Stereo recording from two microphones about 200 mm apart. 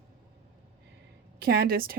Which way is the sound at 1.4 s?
50° right (ahead or behind).